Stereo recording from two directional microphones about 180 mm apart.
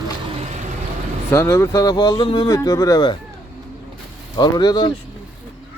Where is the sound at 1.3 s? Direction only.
15° left (ahead or behind).